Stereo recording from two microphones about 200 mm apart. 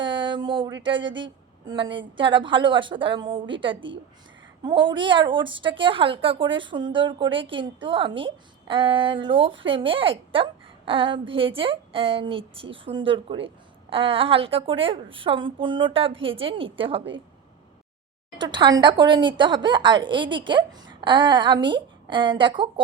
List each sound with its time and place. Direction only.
0.0 s a woman's voice: 25° right (ahead or behind)
18.3 s a woman's voice: 25° right (ahead or behind)